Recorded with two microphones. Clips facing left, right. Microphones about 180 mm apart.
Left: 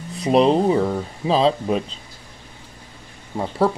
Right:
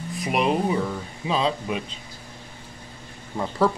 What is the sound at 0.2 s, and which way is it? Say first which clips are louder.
Speech: left 7 dB; 30° left (ahead or behind).